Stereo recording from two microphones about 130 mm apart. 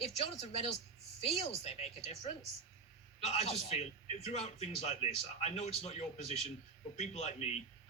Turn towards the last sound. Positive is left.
turn(degrees=55)  # may be behind; listen again after turning